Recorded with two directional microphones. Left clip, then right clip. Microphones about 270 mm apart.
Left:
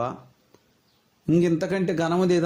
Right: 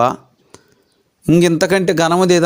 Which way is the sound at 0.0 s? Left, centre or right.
Right.